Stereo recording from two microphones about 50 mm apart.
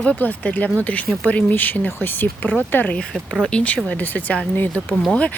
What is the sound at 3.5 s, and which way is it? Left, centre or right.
Speech, left.